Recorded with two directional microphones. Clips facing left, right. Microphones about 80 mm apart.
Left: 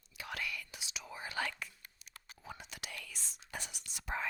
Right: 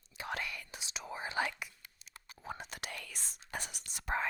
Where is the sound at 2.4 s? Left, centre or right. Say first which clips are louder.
Right 5 dB; right.